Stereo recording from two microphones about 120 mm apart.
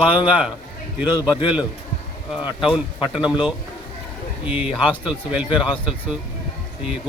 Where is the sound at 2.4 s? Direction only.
5° right (ahead or behind).